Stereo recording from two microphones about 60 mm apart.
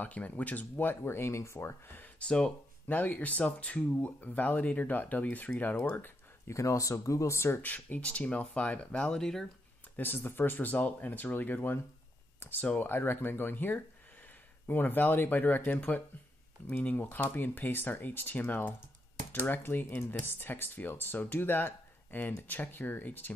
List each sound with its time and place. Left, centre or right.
0.0 s speech: left
2.1 s speech: centre
2.9 s speech: left
5.9 s a sound: left
6.5 s speech: left
7.5 s speech: left; by 9.5 s centre
9.9 s speech: left